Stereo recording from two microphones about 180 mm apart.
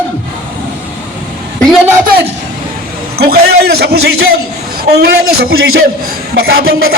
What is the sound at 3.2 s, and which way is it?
A man's voice, 60° right (ahead or behind).